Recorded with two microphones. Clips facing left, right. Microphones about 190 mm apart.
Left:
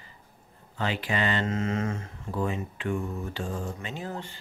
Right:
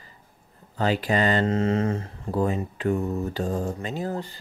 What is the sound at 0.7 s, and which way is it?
Speech, 40° right (ahead or behind).